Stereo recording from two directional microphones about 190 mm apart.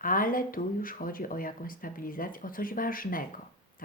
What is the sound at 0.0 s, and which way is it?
Speech, 45° left (ahead or behind).